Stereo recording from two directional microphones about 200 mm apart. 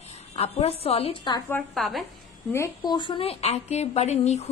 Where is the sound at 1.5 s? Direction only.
Centre (ahead or behind).